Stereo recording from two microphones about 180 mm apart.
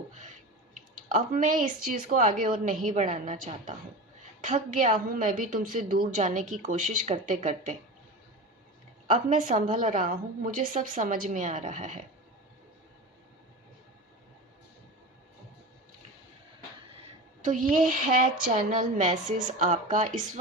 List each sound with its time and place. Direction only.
0.7 s a woman's voice: 45° right (ahead or behind)
9.0 s a woman's voice: 45° right (ahead or behind)
17.4 s a woman's voice: 45° right (ahead or behind)